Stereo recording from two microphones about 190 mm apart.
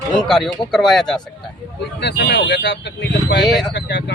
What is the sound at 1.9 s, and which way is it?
Speech, 60° left (ahead or behind).